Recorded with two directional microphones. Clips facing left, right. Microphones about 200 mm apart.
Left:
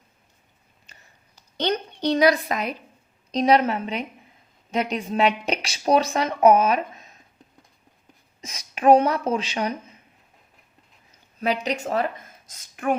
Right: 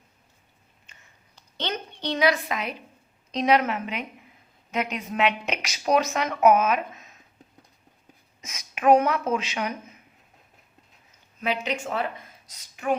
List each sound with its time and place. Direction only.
0.9 s a sound: 40° left (ahead or behind)
1.5 s a woman's voice: 40° left (ahead or behind)
8.4 s a woman's voice: 35° left (ahead or behind)
11.3 s speech: 40° left (ahead or behind)